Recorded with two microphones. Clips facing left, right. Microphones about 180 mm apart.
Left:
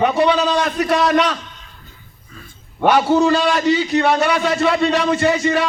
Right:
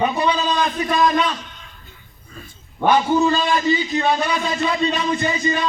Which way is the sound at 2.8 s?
80° left.